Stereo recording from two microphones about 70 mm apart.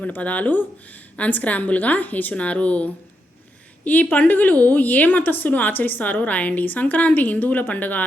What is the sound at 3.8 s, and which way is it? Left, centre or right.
A woman's voice, left.